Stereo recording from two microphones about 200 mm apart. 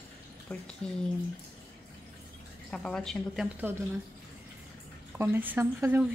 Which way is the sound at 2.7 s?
5° left (ahead or behind).